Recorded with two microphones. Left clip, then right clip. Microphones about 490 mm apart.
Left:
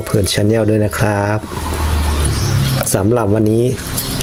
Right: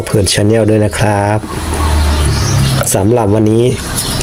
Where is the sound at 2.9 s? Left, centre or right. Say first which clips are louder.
Right 3 dB; left.